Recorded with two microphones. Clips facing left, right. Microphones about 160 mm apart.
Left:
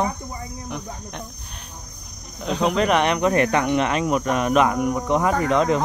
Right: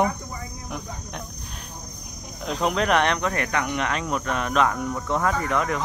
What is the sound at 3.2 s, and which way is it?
Speech, 25° left (ahead or behind).